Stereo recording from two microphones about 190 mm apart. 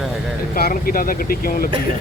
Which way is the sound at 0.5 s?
50° left (ahead or behind).